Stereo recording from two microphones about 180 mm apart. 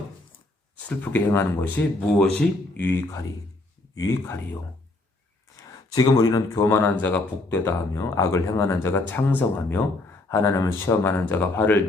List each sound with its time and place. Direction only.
0.9 s speech: 10° left (ahead or behind)
5.5 s speech: 20° left (ahead or behind)